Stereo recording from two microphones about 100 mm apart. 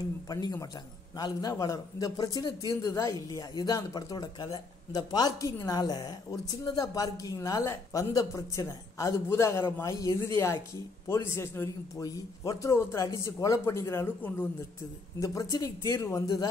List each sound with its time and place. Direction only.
0.3 s speech: 35° left (ahead or behind)
2.7 s speech: 30° left (ahead or behind)
15.1 s speech: 35° left (ahead or behind)